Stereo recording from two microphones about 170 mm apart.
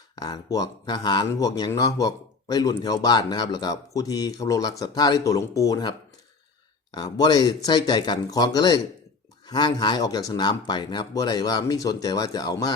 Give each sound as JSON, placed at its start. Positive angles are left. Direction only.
{"t": 0.2, "sound": "speech", "side_deg": 25}
{"t": 6.9, "sound": "speech", "side_deg": 25}